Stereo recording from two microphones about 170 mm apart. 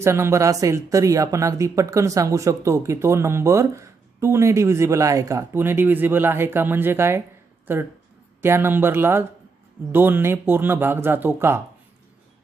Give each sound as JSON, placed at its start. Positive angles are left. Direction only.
{"t": 0.0, "sound": "speech", "side_deg": -15}